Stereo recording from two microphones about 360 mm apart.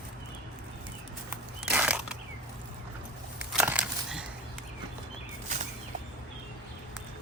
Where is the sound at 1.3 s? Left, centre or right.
Centre.